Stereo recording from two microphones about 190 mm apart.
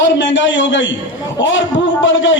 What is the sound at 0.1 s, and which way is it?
A man's voice, 70° left (ahead or behind).